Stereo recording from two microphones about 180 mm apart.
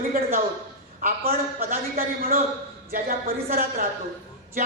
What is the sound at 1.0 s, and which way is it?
A man's voice, 55° right (ahead or behind).